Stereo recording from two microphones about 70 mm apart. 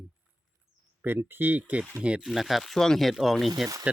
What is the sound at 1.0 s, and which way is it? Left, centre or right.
Speech, right.